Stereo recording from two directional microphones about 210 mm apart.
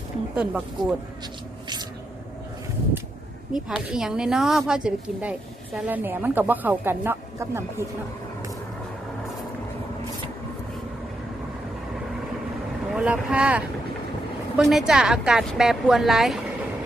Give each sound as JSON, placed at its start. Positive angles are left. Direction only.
{"t": 0.3, "sound": "a woman's voice", "side_deg": -5}
{"t": 1.6, "sound": "a sound", "side_deg": -20}
{"t": 3.5, "sound": "a woman's voice", "side_deg": -5}
{"t": 12.9, "sound": "a woman's voice", "side_deg": -5}